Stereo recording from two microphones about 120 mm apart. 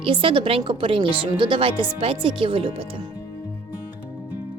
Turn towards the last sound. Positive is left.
turn(degrees=-50)  # may be behind; listen again after turning